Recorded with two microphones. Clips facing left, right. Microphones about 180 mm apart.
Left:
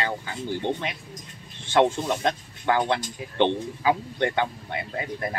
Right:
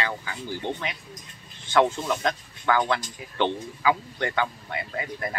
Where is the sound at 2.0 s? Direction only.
25° left (ahead or behind).